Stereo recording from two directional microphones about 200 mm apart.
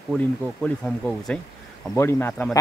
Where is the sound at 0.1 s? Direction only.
5° left (ahead or behind).